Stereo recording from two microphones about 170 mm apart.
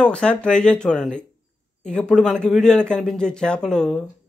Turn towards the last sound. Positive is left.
turn(degrees=5)  # may be behind; listen again after turning